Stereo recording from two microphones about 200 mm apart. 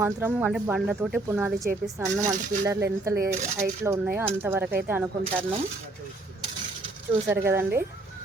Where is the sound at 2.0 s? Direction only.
35° right (ahead or behind).